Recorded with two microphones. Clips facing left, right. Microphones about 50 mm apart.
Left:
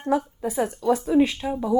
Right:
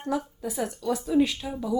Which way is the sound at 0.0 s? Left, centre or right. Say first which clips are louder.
Left 6 dB; left.